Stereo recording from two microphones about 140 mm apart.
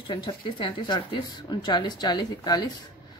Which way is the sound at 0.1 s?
35° left (ahead or behind).